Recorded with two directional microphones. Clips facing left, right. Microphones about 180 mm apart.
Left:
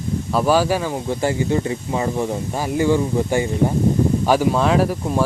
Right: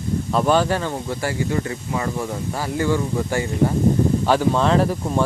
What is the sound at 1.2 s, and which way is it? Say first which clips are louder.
Speech: left 4 dB; 25° left (ahead or behind).